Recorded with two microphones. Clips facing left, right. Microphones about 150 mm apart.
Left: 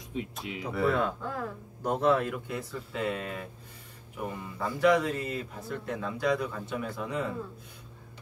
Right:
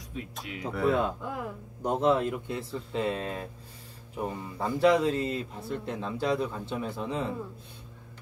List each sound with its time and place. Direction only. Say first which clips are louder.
0.1 s speech: left 3 dB; 20° left (ahead or behind)
0.8 s a man's voice: right 2 dB; 20° right (ahead or behind)
4.6 s a man's voice: right 1 dB; 30° right (ahead or behind)